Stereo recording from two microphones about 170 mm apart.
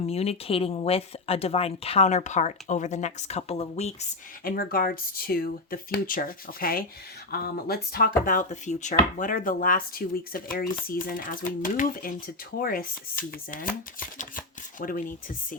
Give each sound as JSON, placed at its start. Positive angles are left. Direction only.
{"t": 0.0, "sound": "speech", "side_deg": 35}
{"t": 4.4, "sound": "speech", "side_deg": 55}
{"t": 8.2, "sound": "speech", "side_deg": 50}
{"t": 14.2, "sound": "shuffling cards", "side_deg": 50}